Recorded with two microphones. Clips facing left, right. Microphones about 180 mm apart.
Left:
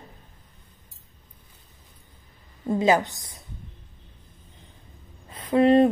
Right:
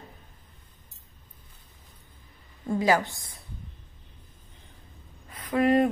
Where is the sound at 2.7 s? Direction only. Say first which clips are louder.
Left 3 dB; 20° left (ahead or behind).